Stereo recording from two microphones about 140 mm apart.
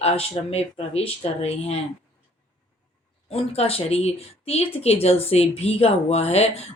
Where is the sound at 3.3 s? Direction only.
45° left (ahead or behind).